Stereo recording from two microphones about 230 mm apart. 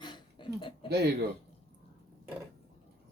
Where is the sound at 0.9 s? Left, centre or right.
Right.